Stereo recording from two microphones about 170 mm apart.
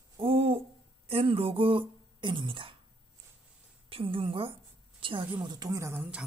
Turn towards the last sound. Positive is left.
turn(degrees=-10)  # may be behind; listen again after turning